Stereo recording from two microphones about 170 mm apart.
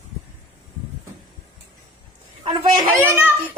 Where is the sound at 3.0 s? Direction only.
10° right (ahead or behind).